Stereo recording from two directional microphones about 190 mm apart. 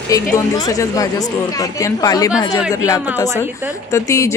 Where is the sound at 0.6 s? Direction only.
20° left (ahead or behind).